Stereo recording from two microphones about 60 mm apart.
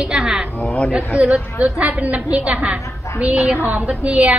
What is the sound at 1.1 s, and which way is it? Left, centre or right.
Speech, centre.